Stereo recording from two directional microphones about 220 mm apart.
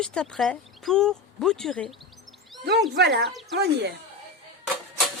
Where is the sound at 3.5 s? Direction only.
50° right (ahead or behind).